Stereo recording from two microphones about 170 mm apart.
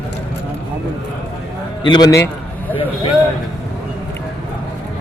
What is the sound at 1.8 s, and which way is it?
Speech, 25° left (ahead or behind).